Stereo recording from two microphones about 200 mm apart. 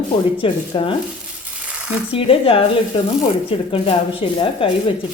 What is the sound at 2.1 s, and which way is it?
Speech, 30° left (ahead or behind).